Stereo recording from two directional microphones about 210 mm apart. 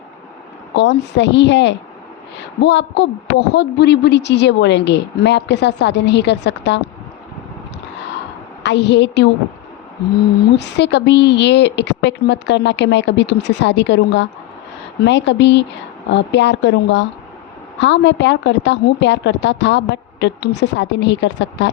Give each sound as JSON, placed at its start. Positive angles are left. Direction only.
{"t": 0.8, "sound": "a woman's voice", "side_deg": 55}
{"t": 8.6, "sound": "a woman's voice", "side_deg": 55}
{"t": 10.6, "sound": "a woman's voice", "side_deg": 55}